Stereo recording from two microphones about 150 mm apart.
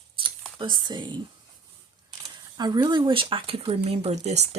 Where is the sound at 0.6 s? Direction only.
30° right (ahead or behind).